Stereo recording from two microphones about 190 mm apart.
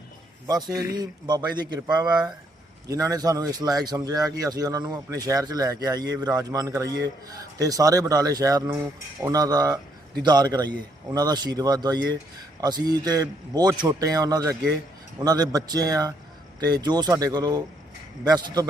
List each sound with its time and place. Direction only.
0.4 s a man's voice: 20° right (ahead or behind)